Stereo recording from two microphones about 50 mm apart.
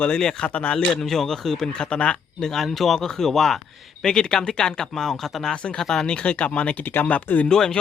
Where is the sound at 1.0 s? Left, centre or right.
Centre.